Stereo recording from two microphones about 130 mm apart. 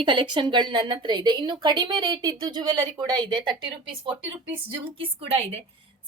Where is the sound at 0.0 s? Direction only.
40° right (ahead or behind).